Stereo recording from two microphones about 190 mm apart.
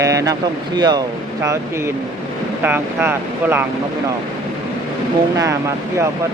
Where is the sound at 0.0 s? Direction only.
15° right (ahead or behind).